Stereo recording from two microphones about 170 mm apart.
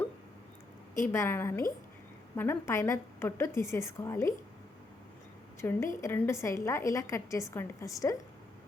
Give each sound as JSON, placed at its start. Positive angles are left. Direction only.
{"t": 0.9, "sound": "a woman's voice", "side_deg": 15}
{"t": 5.5, "sound": "a woman's voice", "side_deg": 15}